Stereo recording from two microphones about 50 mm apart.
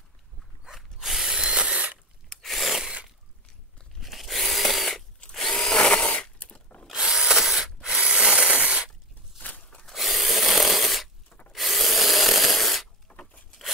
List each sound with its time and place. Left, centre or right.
0.7 s ratchet: centre
1.2 s tools: centre
2.4 s a sound: centre
4.0 s tools: centre
5.3 s drill: centre
6.9 s tools: centre
8.0 s ratchet: centre
8.5 s a sound: right
9.9 s a sound: centre
11.5 s rub: centre